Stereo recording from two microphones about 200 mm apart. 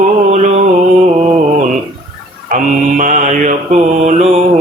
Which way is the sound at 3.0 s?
40° right (ahead or behind).